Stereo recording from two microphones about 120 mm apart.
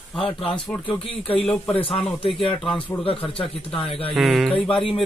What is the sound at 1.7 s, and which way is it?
Speech, 50° left (ahead or behind).